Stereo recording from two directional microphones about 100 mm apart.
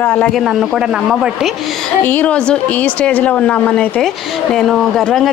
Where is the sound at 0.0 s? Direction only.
15° left (ahead or behind).